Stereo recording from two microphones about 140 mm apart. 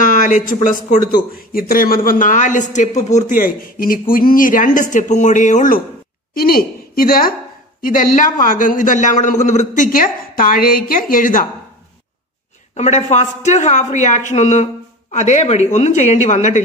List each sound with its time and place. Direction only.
0.0 s a sound: 70° left (ahead or behind)
0.7 s speech: 75° left (ahead or behind)
6.3 s a woman's voice: 90° left
7.8 s speech: 70° left (ahead or behind)
12.7 s speech: 55° left (ahead or behind)